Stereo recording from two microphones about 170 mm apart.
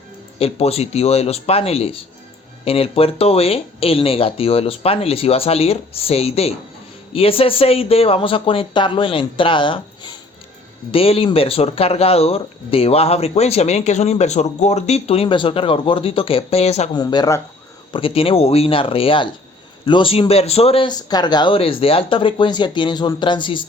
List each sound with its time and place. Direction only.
0.3 s speech: 35° left (ahead or behind)
16.9 s speech: 25° left (ahead or behind)
17.9 s speech: 35° left (ahead or behind)